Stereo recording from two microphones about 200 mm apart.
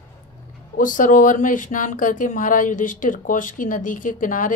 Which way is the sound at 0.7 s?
40° left (ahead or behind).